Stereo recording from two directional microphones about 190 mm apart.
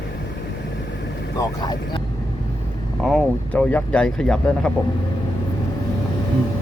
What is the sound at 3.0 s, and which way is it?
Speech, 5° left (ahead or behind).